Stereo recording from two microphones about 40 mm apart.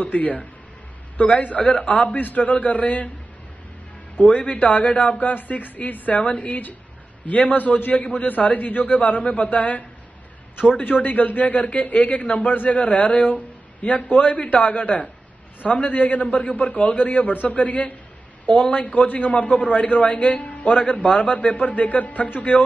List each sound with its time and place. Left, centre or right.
0.0 s speech: left
1.6 s a man's voice: left
4.2 s a man's voice: left
10.8 s a man's voice: left